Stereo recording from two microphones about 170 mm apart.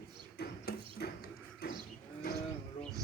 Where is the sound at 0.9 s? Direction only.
65° left (ahead or behind).